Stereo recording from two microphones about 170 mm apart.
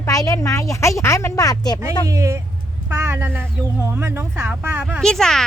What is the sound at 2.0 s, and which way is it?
Speech, 20° right (ahead or behind).